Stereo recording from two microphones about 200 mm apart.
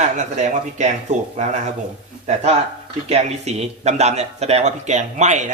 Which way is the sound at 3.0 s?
30° right (ahead or behind).